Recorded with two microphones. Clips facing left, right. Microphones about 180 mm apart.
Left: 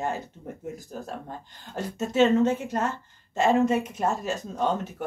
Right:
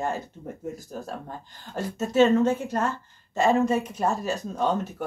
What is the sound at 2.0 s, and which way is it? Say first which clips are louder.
A woman's voice: right 1 dB; 20° left (ahead or behind).